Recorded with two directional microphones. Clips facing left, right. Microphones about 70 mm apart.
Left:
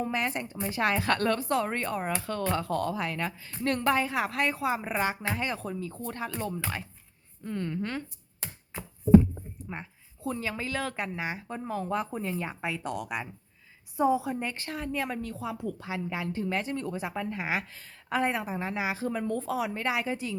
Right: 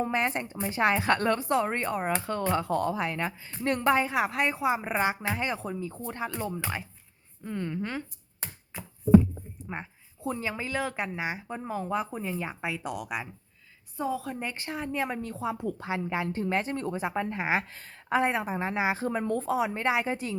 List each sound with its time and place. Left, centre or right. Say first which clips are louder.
0.0 s speech: right 2 dB; right; by 8.0 s centre
9.6 s speech: right 3 dB; right; by 13.2 s centre
13.9 s a woman's voice: left 6 dB; centre
14.3 s a woman's voice: left 2 dB; centre
14.5 s speech: right 1 dB; centre
17.7 s a woman's voice: right 2 dB; right
18.1 s speech: right 2 dB; right
19.5 s speech: right 3 dB; right